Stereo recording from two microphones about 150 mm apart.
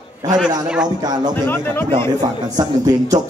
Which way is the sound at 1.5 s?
15° left (ahead or behind).